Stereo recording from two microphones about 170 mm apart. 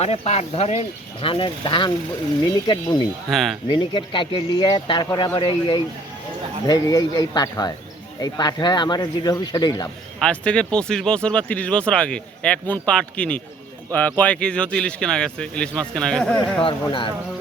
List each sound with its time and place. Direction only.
0.0 s speech: 40° left (ahead or behind)
3.2 s speech: centre (ahead or behind)
3.7 s speech: 30° left (ahead or behind)
10.2 s speech: 5° left (ahead or behind)
16.6 s speech: 30° left (ahead or behind)